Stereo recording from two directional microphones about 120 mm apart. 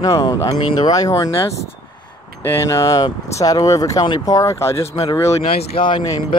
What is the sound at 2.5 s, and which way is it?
Speech, 25° left (ahead or behind).